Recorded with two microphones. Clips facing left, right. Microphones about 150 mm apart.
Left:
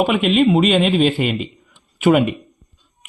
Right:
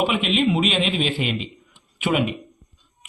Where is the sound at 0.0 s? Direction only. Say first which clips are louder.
Left 6 dB; 50° left (ahead or behind).